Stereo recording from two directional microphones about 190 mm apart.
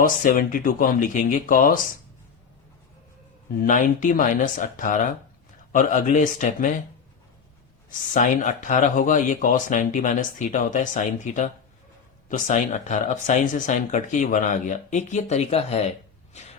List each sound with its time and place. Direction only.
0.0 s speech: 45° left (ahead or behind)
3.6 s speech: 40° left (ahead or behind)
7.9 s speech: 40° left (ahead or behind)
16.3 s a sound: 35° left (ahead or behind)